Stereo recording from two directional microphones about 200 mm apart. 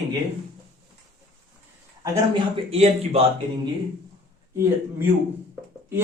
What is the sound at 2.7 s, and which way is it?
Speech, 30° right (ahead or behind).